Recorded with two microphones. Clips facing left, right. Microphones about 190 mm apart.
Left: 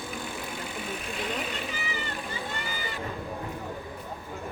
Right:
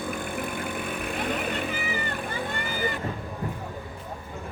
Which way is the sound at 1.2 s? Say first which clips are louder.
Right 4 dB; 55° right (ahead or behind).